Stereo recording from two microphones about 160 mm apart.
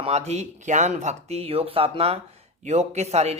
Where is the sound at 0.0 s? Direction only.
40° right (ahead or behind).